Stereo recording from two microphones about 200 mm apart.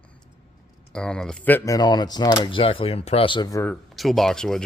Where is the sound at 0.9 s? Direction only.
5° left (ahead or behind).